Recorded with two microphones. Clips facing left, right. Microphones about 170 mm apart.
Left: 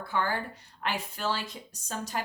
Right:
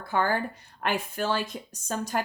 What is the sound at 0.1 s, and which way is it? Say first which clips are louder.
A woman's voice: right 5 dB; 45° right (ahead or behind).